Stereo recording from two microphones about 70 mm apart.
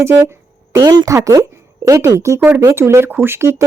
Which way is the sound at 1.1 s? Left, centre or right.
Right.